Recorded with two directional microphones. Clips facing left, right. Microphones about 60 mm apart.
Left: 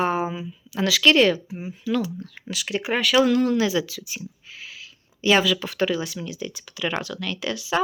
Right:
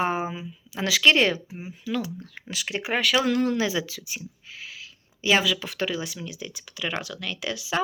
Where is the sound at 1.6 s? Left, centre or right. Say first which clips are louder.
Left 4 dB; centre.